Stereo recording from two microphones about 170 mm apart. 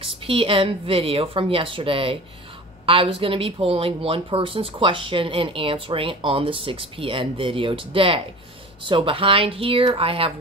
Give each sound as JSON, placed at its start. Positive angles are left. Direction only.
{"t": 0.0, "sound": "speech", "side_deg": -35}